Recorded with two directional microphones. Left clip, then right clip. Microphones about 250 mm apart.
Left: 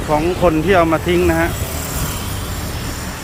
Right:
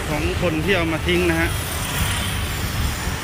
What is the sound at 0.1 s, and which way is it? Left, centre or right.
Speech, centre.